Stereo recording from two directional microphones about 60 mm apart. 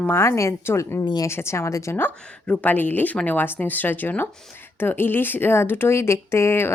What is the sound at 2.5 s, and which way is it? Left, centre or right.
A woman's voice, left.